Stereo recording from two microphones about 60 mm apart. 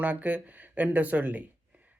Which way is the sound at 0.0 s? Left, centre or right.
Right.